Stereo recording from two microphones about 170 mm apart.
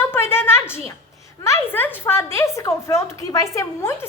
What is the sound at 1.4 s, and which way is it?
A woman's voice, 15° left (ahead or behind).